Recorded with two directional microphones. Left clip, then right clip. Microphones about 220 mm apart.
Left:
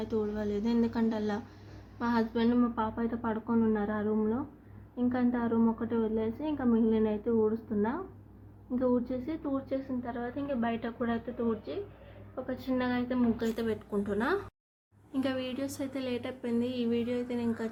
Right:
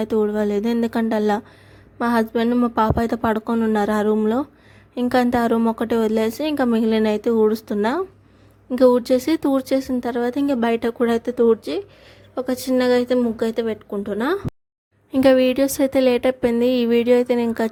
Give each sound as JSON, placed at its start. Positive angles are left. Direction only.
{"t": 0.0, "sound": "a woman's voice", "side_deg": -45}
{"t": 15.1, "sound": "a woman's voice", "side_deg": -50}